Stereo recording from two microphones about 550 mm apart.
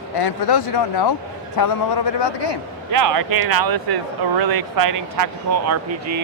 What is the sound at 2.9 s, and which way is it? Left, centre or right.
Speech, right.